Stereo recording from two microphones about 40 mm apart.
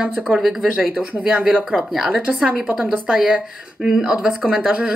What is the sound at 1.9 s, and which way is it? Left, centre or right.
Speech, centre.